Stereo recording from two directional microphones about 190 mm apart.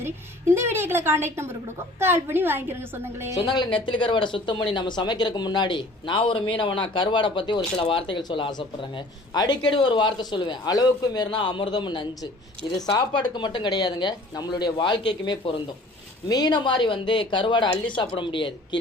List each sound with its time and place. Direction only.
0.0 s a woman's voice: 15° right (ahead or behind)
3.3 s speech: 20° left (ahead or behind)